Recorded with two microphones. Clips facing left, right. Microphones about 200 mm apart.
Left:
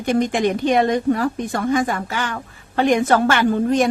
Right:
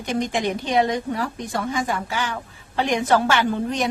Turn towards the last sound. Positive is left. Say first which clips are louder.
# left 6 dB
turn(degrees=50)  # may be behind; listen again after turning